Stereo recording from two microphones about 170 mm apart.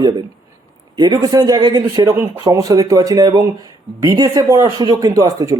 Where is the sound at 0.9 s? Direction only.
25° right (ahead or behind).